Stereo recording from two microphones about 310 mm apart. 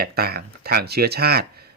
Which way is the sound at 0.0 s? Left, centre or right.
Right.